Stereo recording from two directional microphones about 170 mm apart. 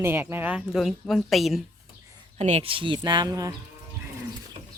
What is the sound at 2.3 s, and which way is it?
Speech, 40° right (ahead or behind).